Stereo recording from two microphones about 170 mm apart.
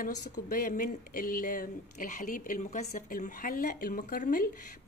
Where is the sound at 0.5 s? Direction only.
55° left (ahead or behind).